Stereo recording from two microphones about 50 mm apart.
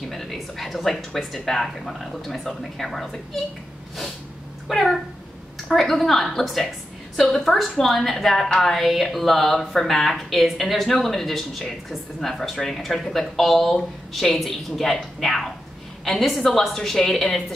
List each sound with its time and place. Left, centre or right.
0.1 s speech: centre
4.6 s a woman's voice: centre